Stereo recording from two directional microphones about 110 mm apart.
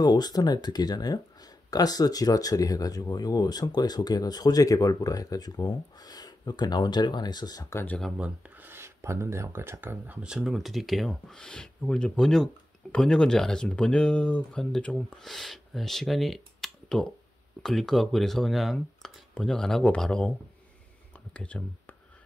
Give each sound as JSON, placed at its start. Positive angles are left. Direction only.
{"t": 0.0, "sound": "speech", "side_deg": 40}
{"t": 7.7, "sound": "speech", "side_deg": 15}
{"t": 8.2, "sound": "speech", "side_deg": -20}